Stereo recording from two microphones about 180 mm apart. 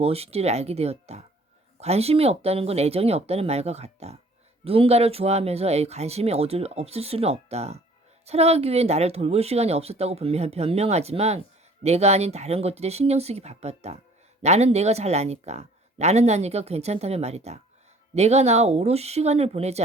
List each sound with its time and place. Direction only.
0.0 s speech: 35° right (ahead or behind)